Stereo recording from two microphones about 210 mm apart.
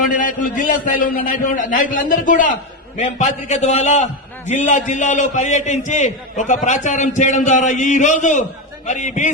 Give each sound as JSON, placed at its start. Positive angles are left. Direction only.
{"t": 0.0, "sound": "a man's voice", "side_deg": 40}